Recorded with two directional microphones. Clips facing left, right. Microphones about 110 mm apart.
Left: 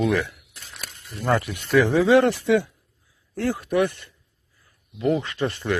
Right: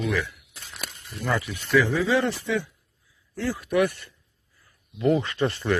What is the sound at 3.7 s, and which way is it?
Speech, 25° left (ahead or behind).